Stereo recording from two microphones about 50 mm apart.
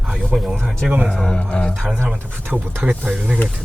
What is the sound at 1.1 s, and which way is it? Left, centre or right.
Speech, centre.